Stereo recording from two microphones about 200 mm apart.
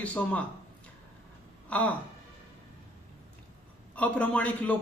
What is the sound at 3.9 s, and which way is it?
Speech, 5° left (ahead or behind).